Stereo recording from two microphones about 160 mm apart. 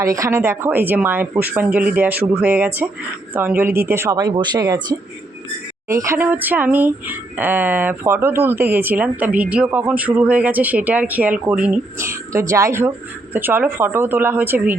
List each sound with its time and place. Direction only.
0.0 s speech: 20° right (ahead or behind)